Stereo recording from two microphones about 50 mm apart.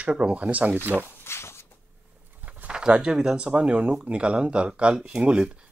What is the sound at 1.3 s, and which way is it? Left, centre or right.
Walk, left.